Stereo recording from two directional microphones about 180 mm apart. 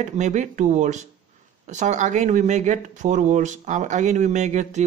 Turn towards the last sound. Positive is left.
turn(degrees=-40)  # may be behind; listen again after turning